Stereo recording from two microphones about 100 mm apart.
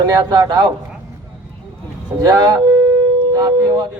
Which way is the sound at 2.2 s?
45° right (ahead or behind).